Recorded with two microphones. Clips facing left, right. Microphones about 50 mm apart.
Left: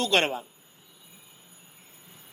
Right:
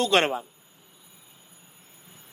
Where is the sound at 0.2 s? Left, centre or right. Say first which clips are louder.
Right 2 dB; right.